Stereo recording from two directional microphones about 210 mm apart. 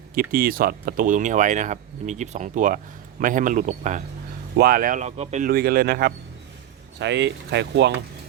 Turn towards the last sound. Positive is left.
turn(degrees=-55)  # may be behind; listen again after turning